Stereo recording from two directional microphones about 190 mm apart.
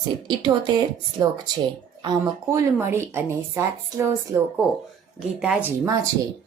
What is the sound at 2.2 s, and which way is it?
Speech, 10° right (ahead or behind).